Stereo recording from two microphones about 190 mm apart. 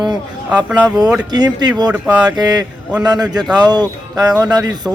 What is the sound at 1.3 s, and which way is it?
Speech, 20° right (ahead or behind).